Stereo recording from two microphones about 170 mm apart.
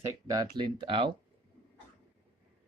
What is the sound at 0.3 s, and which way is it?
Speech, 25° right (ahead or behind).